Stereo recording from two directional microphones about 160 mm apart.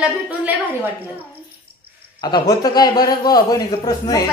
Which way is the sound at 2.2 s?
25° left (ahead or behind).